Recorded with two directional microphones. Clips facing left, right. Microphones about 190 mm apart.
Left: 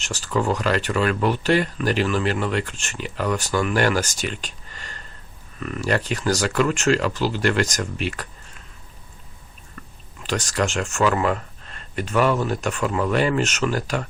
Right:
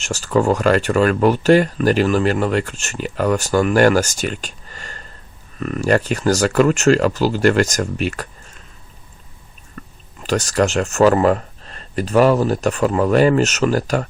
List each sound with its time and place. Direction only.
0.0 s speech: 45° right (ahead or behind)
10.2 s speech: 40° right (ahead or behind)